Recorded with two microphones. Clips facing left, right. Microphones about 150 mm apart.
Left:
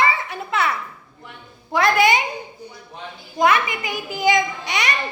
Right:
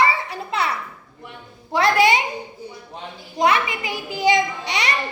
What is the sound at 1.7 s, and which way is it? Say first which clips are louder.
Speech: even; 30° right (ahead or behind).